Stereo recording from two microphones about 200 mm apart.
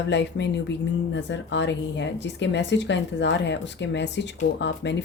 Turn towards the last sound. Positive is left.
turn(degrees=60)  # may be behind; listen again after turning